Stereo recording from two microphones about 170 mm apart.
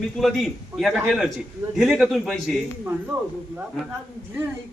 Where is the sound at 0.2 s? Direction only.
Centre (ahead or behind).